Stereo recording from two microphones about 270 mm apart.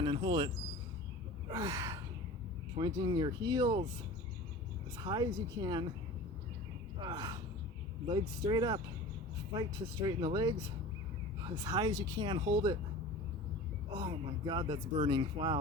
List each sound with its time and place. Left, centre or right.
0.0 s speech: centre
1.5 s gasp: centre
2.7 s speech: centre
5.0 s speech: centre
7.0 s speech: centre
10.1 s speech: centre
13.9 s speech: centre